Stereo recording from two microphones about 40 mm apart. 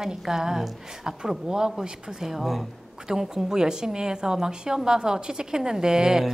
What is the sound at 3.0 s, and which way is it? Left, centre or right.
A woman's voice, centre.